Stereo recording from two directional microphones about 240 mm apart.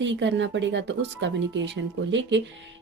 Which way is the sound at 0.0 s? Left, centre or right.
Right.